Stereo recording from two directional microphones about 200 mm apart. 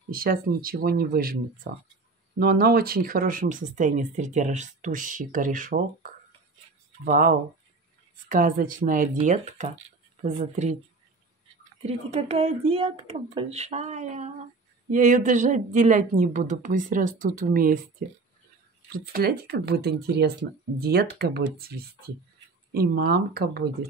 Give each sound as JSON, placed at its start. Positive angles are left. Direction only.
{"t": 0.1, "sound": "speech", "side_deg": -45}
{"t": 7.1, "sound": "speech", "side_deg": -45}
{"t": 11.8, "sound": "speech", "side_deg": -30}